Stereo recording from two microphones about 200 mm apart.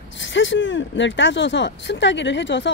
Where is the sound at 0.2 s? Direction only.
65° left (ahead or behind).